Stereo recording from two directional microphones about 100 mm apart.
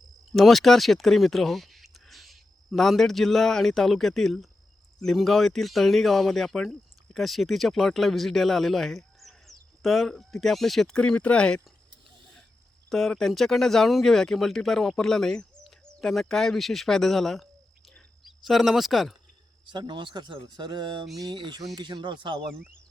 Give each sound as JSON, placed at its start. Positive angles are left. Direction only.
{"t": 0.3, "sound": "speech", "side_deg": 0}
{"t": 12.9, "sound": "speech", "side_deg": 5}
{"t": 19.6, "sound": "speech", "side_deg": -50}